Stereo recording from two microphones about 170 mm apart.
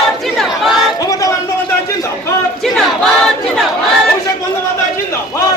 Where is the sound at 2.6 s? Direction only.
Centre (ahead or behind).